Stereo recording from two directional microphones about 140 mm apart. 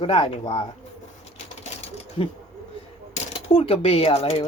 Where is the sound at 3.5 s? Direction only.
45° left (ahead or behind).